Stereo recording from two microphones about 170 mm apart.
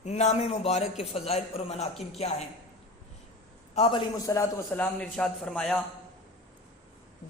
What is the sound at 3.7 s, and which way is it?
Speech, 35° left (ahead or behind).